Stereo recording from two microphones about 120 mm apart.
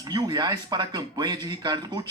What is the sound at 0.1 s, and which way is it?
Speech, 35° right (ahead or behind).